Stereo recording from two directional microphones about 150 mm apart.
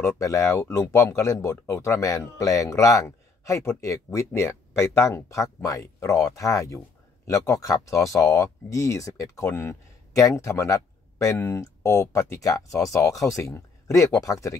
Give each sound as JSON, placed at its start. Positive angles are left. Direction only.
{"t": 0.0, "sound": "speech", "side_deg": 20}